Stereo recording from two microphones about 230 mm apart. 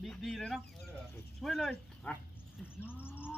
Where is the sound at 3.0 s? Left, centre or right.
Centre.